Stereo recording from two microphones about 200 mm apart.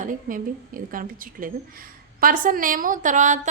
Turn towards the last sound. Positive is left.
turn(degrees=-40)  # may be behind; listen again after turning